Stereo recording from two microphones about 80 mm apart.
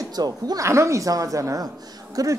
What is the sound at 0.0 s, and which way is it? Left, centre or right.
Speech, right.